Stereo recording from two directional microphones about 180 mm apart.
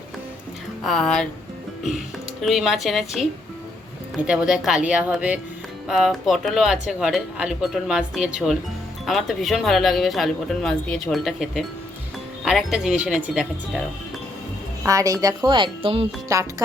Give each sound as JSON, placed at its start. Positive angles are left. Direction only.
{"t": 0.9, "sound": "speech", "side_deg": 5}
{"t": 2.4, "sound": "speech", "side_deg": 0}
{"t": 14.8, "sound": "speech", "side_deg": -20}
{"t": 16.3, "sound": "speech", "side_deg": -15}